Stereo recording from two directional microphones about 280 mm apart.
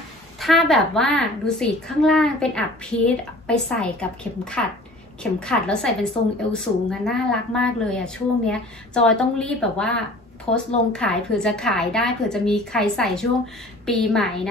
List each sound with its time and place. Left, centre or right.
0.4 s a woman's voice: centre